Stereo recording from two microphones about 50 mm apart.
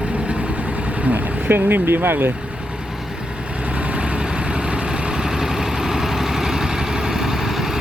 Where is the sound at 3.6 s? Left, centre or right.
Right; by 7.7 s centre.